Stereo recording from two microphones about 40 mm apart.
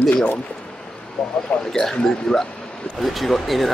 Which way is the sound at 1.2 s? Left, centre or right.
Centre.